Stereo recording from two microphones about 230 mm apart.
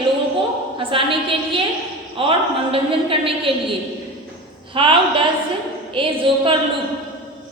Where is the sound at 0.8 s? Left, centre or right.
Right.